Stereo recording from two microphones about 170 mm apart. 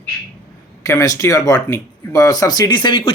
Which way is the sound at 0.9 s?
20° left (ahead or behind).